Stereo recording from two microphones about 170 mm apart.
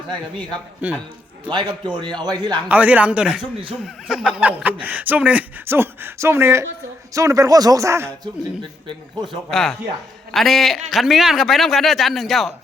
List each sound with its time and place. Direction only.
0.8 s speech: 10° right (ahead or behind)
1.5 s a man's voice: 25° right (ahead or behind)
2.6 s a man's voice: 10° right (ahead or behind)
9.5 s a man's voice: centre (ahead or behind)